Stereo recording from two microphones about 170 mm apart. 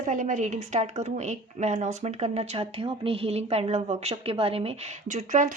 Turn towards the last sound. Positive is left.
turn(degrees=-45)  # may be behind; listen again after turning